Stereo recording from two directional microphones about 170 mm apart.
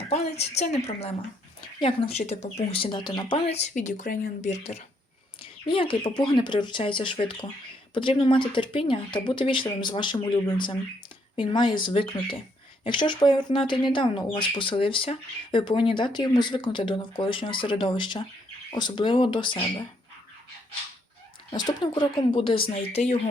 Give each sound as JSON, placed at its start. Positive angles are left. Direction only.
{"t": 0.1, "sound": "speech", "side_deg": 40}
{"t": 5.4, "sound": "speech", "side_deg": 30}
{"t": 21.5, "sound": "speech", "side_deg": 25}